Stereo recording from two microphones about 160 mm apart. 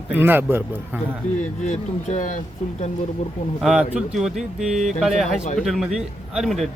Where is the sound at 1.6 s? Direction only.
45° left (ahead or behind).